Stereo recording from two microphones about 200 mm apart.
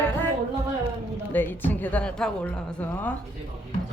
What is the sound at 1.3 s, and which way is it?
A woman's voice, 10° left (ahead or behind).